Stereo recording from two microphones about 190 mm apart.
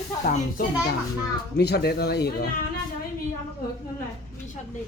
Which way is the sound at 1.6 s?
60° left (ahead or behind).